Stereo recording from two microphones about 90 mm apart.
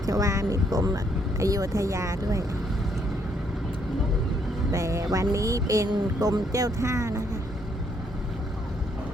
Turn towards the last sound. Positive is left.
turn(degrees=-35)  # may be behind; listen again after turning